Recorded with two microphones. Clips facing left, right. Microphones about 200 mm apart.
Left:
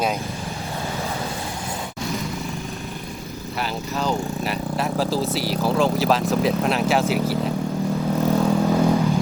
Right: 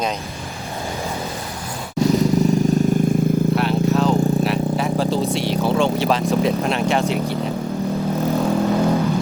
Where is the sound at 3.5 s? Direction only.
Centre (ahead or behind).